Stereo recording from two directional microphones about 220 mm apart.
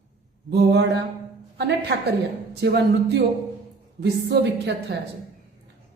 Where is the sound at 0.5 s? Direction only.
50° right (ahead or behind).